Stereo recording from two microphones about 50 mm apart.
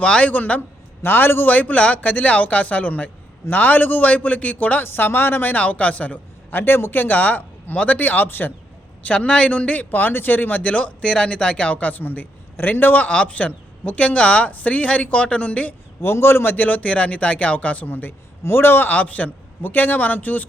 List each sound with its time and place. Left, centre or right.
0.0 s speech: left
1.0 s a man's voice: left
1.5 s speech: left
4.8 s speech: left
6.5 s speech: left
9.0 s speech: left
9.9 s speech: left
10.6 s speech: left
12.0 s speech: left
16.0 s speech: left
17.8 s speech: left